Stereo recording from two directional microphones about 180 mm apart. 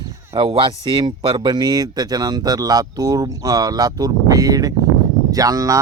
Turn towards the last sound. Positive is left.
turn(degrees=-20)  # may be behind; listen again after turning